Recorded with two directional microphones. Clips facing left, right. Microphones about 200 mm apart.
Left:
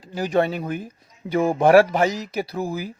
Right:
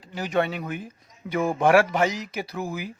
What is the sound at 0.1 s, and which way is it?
Speech, 35° left (ahead or behind).